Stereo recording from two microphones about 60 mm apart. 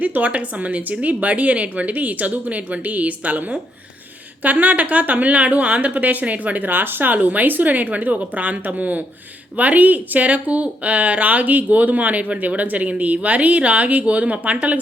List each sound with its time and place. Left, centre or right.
0.0 s speech: right